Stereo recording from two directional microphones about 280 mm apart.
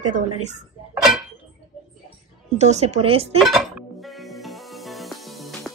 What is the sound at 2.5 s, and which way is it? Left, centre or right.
Speech, right.